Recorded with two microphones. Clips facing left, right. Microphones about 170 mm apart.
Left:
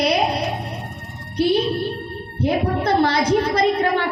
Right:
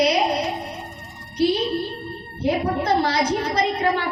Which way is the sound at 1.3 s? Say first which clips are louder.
Left 2 dB; 55° left (ahead or behind).